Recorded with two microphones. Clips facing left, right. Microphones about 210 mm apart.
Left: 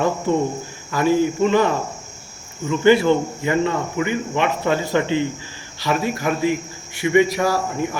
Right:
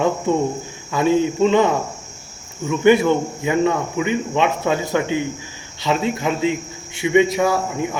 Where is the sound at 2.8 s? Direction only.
15° right (ahead or behind).